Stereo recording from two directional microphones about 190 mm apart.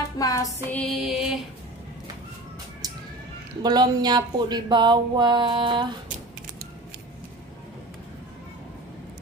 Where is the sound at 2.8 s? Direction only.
20° right (ahead or behind).